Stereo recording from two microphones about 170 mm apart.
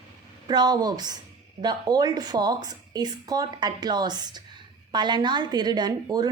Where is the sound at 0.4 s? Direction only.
25° right (ahead or behind).